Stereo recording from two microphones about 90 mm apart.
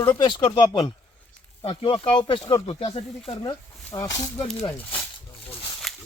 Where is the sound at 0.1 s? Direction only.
60° left (ahead or behind).